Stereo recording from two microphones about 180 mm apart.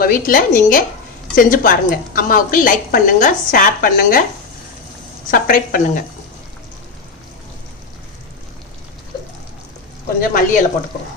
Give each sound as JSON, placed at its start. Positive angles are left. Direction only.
{"t": 0.0, "sound": "a woman's voice", "side_deg": 50}
{"t": 5.3, "sound": "a woman's voice", "side_deg": 50}
{"t": 10.2, "sound": "a woman's voice", "side_deg": 50}